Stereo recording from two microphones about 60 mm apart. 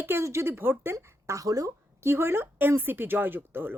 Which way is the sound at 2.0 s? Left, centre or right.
Right.